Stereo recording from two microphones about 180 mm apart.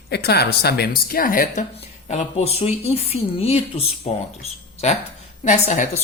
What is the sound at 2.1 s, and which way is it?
A woman's voice, 35° left (ahead or behind).